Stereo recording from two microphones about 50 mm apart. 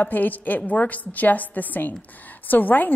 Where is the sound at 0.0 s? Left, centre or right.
Left.